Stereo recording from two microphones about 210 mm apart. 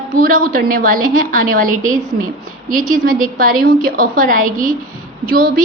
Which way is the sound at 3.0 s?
40° right (ahead or behind).